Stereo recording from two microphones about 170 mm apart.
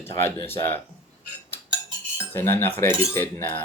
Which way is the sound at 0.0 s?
15° left (ahead or behind).